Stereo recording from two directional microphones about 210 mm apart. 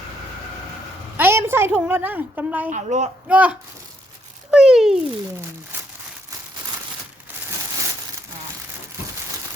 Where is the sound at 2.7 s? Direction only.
35° right (ahead or behind).